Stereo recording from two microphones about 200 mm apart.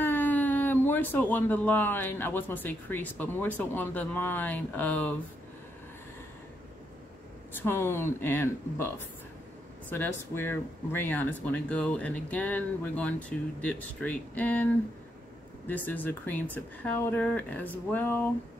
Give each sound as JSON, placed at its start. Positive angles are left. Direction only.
{"t": 0.0, "sound": "speech", "side_deg": 10}
{"t": 7.5, "sound": "speech", "side_deg": 10}
{"t": 9.8, "sound": "speech", "side_deg": 10}